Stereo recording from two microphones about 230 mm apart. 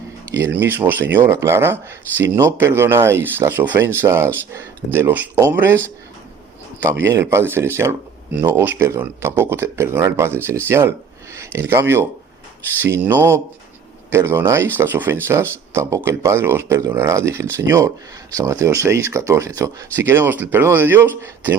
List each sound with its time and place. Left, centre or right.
0.5 s speech: centre
7.1 s speech: centre